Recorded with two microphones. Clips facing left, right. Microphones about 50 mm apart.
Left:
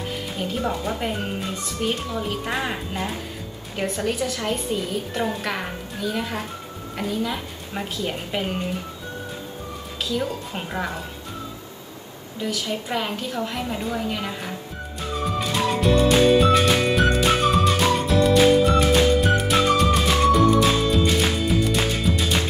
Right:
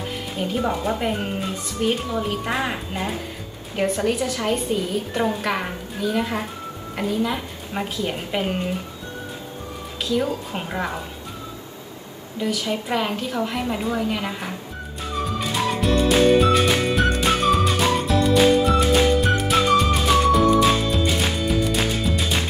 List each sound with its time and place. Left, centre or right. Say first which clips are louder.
0.4 s speech: right 3 dB; centre
10.0 s speech: right 4 dB; centre
12.4 s speech: right 3 dB; centre
15.2 s music: left 1 dB; centre